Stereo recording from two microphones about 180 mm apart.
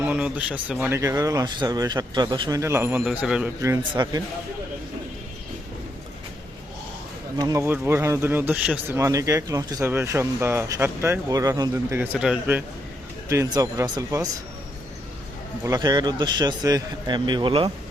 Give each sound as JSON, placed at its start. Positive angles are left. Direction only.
{"t": 0.0, "sound": "speech", "side_deg": -10}
{"t": 3.6, "sound": "a man's voice", "side_deg": -20}
{"t": 7.3, "sound": "a man's voice", "side_deg": -20}
{"t": 15.6, "sound": "a man's voice", "side_deg": -20}